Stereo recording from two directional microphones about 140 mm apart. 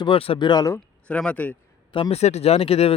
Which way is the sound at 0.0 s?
40° left (ahead or behind).